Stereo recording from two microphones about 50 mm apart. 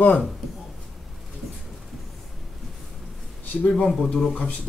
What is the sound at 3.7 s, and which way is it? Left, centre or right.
Speech, centre.